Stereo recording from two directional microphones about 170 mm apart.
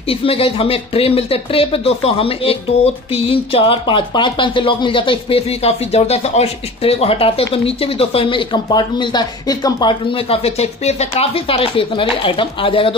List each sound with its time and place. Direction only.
0.1 s speech: 35° left (ahead or behind)